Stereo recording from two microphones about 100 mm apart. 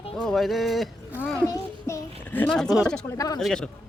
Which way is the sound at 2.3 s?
20° left (ahead or behind).